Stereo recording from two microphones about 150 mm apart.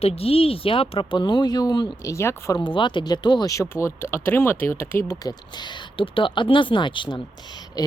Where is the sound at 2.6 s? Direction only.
35° left (ahead or behind).